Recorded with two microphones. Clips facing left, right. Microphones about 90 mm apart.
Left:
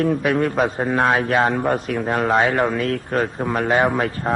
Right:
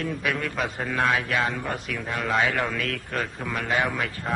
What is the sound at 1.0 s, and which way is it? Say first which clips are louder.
A man's voice: left 6 dB; 45° left (ahead or behind).